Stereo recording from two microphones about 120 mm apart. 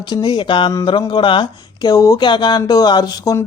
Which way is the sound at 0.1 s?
40° left (ahead or behind).